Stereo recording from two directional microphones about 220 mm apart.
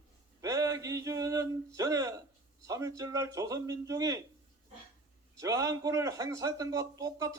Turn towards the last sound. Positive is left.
turn(degrees=-15)  # may be behind; listen again after turning